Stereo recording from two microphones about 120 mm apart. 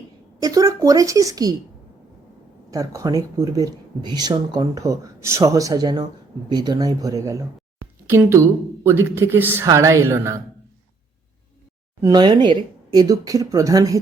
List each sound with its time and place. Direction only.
0.3 s speech: 30° right (ahead or behind)
2.6 s speech: 30° right (ahead or behind)
12.0 s speech: 35° right (ahead or behind)